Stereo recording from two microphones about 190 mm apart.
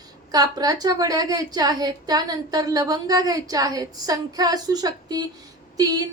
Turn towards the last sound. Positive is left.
turn(degrees=-20)  # may be behind; listen again after turning